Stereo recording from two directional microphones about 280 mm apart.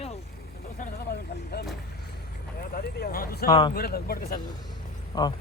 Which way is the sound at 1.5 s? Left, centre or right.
Left.